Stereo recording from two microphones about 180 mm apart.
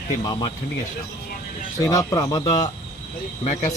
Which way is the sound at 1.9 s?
20° left (ahead or behind).